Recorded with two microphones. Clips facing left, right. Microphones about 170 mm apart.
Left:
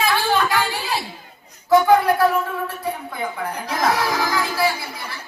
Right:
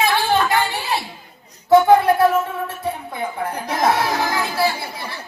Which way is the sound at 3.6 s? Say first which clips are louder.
Right 2 dB; 25° right (ahead or behind).